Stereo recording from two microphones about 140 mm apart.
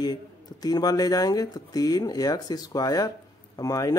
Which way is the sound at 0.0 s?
25° left (ahead or behind).